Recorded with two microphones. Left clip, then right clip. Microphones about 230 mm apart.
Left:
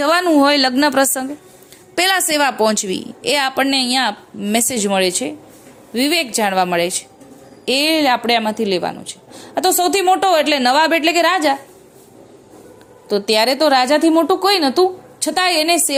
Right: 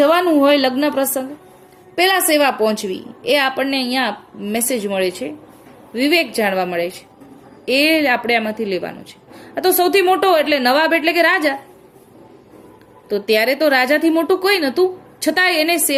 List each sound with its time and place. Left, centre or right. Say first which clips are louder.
0.0 s a woman's voice: even; left
13.1 s speech: left 1 dB; left